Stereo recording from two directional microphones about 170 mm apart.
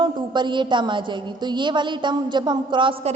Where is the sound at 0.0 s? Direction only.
25° right (ahead or behind).